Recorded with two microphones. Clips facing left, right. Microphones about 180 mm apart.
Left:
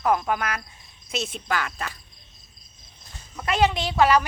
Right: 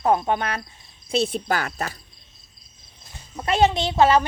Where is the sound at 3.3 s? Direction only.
30° right (ahead or behind).